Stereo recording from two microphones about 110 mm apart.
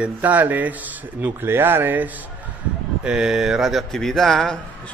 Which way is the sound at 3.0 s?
5° right (ahead or behind).